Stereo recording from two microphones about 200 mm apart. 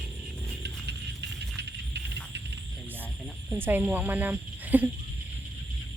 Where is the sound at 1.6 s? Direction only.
60° right (ahead or behind).